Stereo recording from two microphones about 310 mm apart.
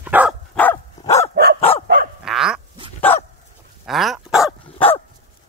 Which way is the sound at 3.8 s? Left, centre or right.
Centre.